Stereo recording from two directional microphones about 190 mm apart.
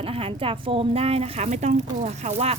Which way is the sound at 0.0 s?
30° right (ahead or behind).